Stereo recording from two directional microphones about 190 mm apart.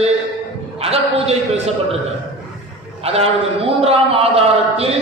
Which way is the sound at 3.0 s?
30° right (ahead or behind).